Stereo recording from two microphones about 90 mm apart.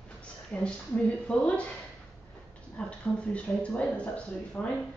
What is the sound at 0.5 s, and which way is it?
Speech, 15° left (ahead or behind).